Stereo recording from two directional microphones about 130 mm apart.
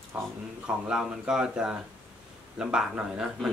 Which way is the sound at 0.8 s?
5° right (ahead or behind).